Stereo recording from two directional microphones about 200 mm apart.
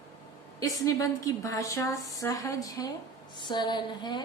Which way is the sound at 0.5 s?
15° left (ahead or behind).